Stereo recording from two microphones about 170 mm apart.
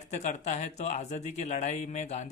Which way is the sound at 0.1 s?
45° left (ahead or behind).